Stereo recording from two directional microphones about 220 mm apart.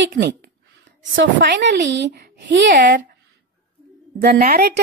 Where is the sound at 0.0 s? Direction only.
50° right (ahead or behind).